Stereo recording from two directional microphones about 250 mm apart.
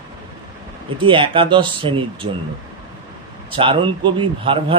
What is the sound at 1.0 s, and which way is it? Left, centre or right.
A man's voice, centre.